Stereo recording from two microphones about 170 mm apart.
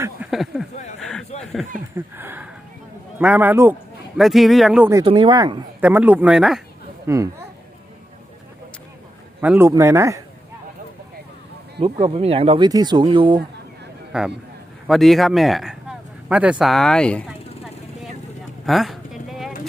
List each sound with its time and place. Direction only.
0.3 s a sound: centre (ahead or behind)
2.1 s speech: 10° right (ahead or behind)
4.2 s speech: centre (ahead or behind)
5.0 s speech: 30° right (ahead or behind)
5.8 s speech: 10° right (ahead or behind)
7.1 s speech: 15° right (ahead or behind)
9.4 s speech: 10° right (ahead or behind)
11.8 s speech: 30° right (ahead or behind)
14.1 s speech: 5° right (ahead or behind)
18.6 s a sound: centre (ahead or behind)